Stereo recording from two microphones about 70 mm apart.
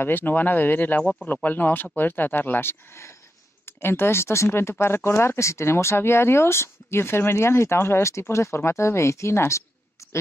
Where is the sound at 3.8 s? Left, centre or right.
Left.